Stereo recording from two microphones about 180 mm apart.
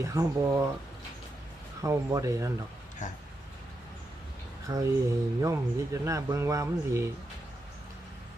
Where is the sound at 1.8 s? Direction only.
15° right (ahead or behind).